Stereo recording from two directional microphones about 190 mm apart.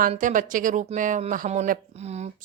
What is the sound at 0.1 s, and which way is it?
Speech, 40° right (ahead or behind).